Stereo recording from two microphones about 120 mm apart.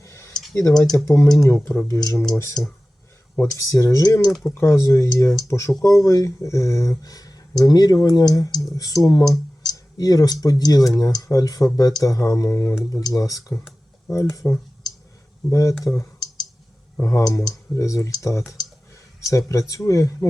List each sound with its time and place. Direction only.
0.0 s a sound: 25° left (ahead or behind)
1.0 s speech: 25° left (ahead or behind)
2.0 s speech: 30° left (ahead or behind)
2.6 s speech: 5° left (ahead or behind)
3.3 s speech: 25° left (ahead or behind)
4.3 s speech: centre (ahead or behind)
4.5 s speech: 25° left (ahead or behind)